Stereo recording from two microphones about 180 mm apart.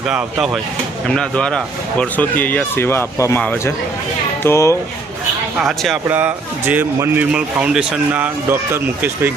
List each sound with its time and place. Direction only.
0.1 s speech: 5° right (ahead or behind); by 4.8 s 15° left (ahead or behind)
5.5 s speech: centre (ahead or behind)
6.1 s speech: 10° right (ahead or behind)